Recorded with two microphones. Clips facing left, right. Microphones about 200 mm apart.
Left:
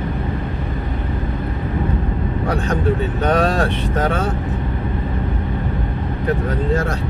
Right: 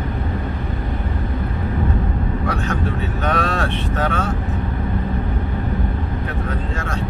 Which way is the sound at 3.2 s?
35° left (ahead or behind).